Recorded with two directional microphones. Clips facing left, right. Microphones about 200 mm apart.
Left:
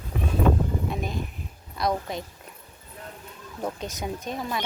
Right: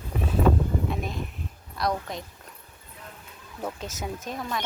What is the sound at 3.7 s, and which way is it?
Speech, 5° right (ahead or behind).